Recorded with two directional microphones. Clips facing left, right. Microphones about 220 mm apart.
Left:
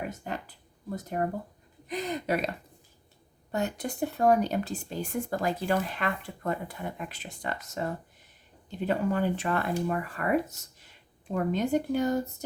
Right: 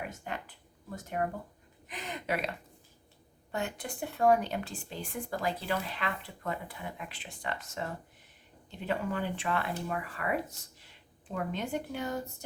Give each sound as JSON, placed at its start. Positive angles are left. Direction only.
{"t": 0.1, "sound": "speech", "side_deg": 35}
{"t": 8.9, "sound": "speech", "side_deg": 40}